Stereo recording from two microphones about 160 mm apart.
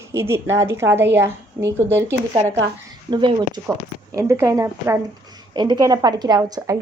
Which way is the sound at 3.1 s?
30° right (ahead or behind).